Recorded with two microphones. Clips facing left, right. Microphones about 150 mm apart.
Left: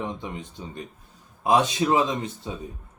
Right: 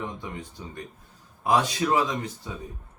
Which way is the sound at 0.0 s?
20° left (ahead or behind).